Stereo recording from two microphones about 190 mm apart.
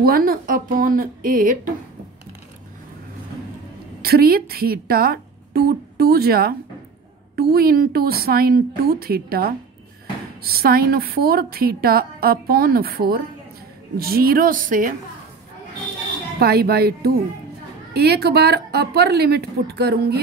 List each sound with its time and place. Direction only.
0.0 s a woman's voice: 50° right (ahead or behind)
4.0 s a woman's voice: 55° right (ahead or behind)
16.3 s speech: 55° right (ahead or behind)